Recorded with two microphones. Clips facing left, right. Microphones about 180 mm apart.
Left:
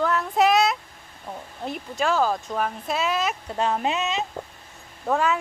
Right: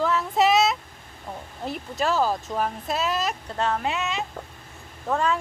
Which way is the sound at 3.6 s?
15° left (ahead or behind).